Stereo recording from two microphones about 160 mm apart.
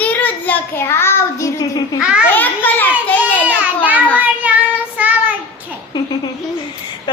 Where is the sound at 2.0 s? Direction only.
5° right (ahead or behind).